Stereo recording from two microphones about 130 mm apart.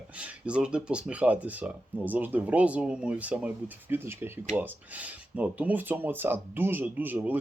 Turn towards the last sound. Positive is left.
turn(degrees=-15)  # may be behind; listen again after turning